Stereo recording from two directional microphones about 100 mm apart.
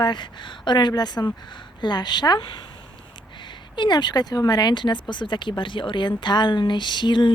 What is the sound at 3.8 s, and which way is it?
Speech, 45° left (ahead or behind).